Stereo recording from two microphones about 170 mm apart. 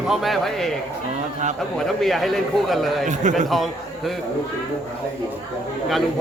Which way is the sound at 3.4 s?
Centre (ahead or behind).